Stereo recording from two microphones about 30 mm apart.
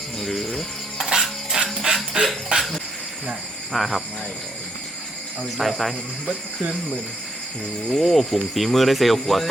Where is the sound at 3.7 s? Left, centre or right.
Centre.